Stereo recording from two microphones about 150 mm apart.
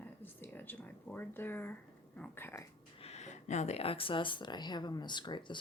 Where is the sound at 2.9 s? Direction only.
45° left (ahead or behind).